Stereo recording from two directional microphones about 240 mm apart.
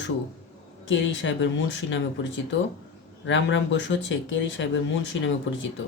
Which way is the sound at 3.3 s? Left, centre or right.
Left.